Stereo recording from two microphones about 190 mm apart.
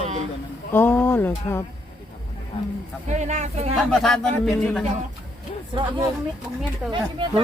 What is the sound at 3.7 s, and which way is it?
Speech, centre (ahead or behind).